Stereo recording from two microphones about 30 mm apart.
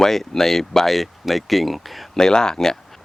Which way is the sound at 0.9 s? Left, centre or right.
Centre.